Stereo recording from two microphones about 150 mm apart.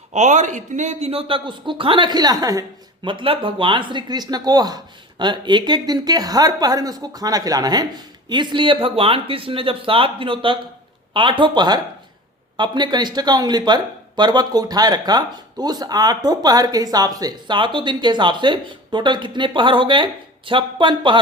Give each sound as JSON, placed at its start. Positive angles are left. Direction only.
{"t": 0.1, "sound": "speech", "side_deg": -55}